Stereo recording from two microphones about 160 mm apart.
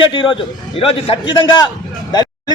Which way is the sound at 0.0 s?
35° left (ahead or behind).